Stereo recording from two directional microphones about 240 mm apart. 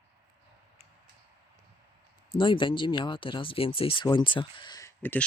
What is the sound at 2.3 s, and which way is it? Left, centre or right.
Speech, left.